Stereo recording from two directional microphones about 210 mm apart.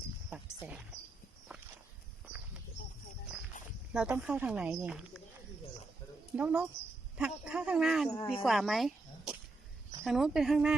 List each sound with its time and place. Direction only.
0.6 s speech: 5° right (ahead or behind)
3.9 s speech: 5° right (ahead or behind)
6.3 s speech: 5° right (ahead or behind)
8.1 s speech: 20° left (ahead or behind)
8.4 s speech: centre (ahead or behind)